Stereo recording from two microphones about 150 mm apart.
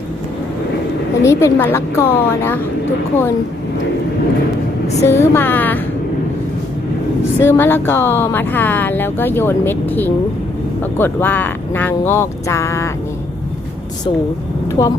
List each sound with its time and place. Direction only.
1.2 s speech: 20° left (ahead or behind)
5.0 s speech: 20° left (ahead or behind)
7.4 s speech: 15° left (ahead or behind)
14.8 s speech: 55° left (ahead or behind)